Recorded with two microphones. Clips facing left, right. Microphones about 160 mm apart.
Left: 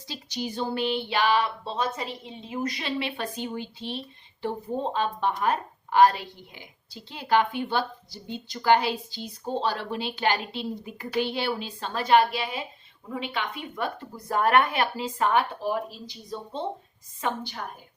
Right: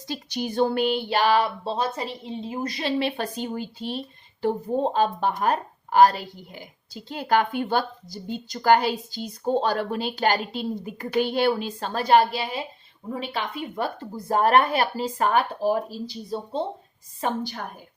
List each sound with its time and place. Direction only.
0.1 s speech: 55° right (ahead or behind)
1.0 s a woman's voice: 40° right (ahead or behind)